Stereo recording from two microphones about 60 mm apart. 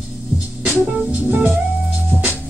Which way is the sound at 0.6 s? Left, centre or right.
Right.